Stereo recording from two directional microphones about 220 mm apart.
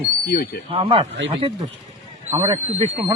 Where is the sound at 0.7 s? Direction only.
25° right (ahead or behind).